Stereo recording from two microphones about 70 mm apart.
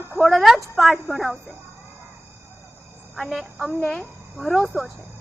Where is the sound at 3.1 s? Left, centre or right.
Centre.